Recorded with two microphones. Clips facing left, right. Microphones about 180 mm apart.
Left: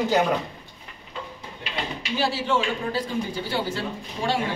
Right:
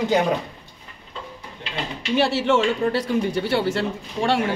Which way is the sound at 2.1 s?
70° right (ahead or behind).